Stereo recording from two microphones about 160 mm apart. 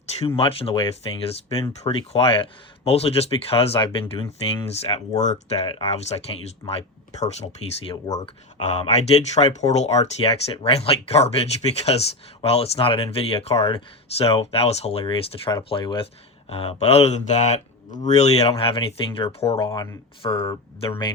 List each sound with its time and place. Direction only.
0.2 s speech: 35° left (ahead or behind)
19.7 s speech: 20° left (ahead or behind)
20.2 s speech: 35° left (ahead or behind)